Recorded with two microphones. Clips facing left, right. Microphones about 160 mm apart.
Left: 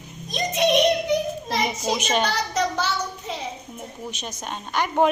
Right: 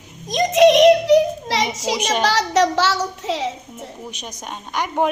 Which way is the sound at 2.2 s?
90° right.